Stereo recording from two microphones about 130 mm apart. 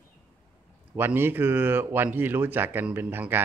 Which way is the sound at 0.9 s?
15° right (ahead or behind).